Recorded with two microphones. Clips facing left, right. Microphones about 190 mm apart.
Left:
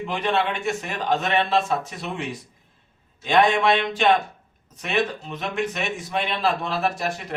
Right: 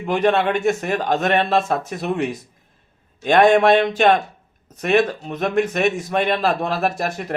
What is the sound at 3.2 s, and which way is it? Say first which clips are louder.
A man's voice: right 6 dB; 50° right (ahead or behind).